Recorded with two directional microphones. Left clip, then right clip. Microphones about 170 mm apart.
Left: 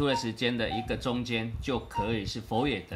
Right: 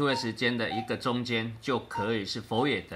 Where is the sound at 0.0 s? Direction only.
20° left (ahead or behind).